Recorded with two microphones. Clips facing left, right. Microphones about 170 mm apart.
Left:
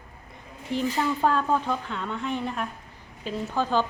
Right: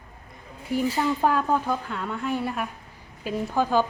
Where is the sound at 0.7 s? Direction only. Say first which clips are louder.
Right 2 dB; 10° right (ahead or behind).